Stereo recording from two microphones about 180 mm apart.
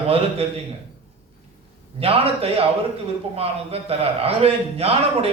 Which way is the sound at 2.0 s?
35° right (ahead or behind).